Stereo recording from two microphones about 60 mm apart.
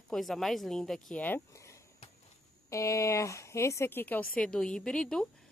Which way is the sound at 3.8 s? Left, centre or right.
Left.